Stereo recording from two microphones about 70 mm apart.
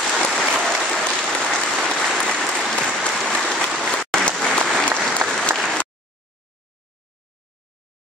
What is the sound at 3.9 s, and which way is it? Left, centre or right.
Applause, centre.